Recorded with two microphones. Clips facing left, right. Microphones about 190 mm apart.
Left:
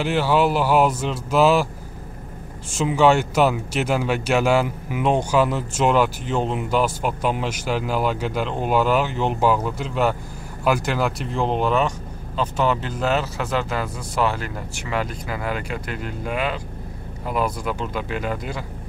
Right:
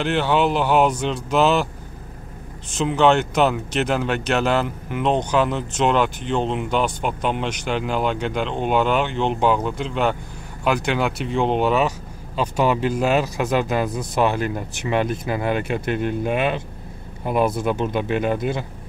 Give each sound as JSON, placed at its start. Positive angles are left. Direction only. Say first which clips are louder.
{"t": 0.0, "sound": "speech", "louder": "even", "side_deg": 5}
{"t": 2.8, "sound": "a man's voice", "louder": "even", "side_deg": 5}